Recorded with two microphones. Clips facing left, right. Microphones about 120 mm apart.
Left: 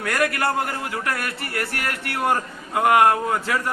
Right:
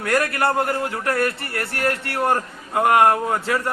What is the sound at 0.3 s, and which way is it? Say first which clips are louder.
Speech: right 3 dB; 25° right (ahead or behind).